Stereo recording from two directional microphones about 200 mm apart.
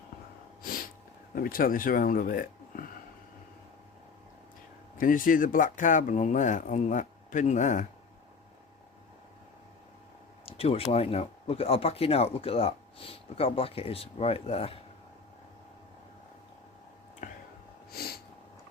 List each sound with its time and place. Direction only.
1.4 s speech: 45° left (ahead or behind)
4.9 s speech: 45° left (ahead or behind)
10.4 s a sound: 30° left (ahead or behind)
10.9 s speech: 30° left (ahead or behind)
17.2 s whispering: 40° left (ahead or behind)
17.9 s a sound: 50° left (ahead or behind)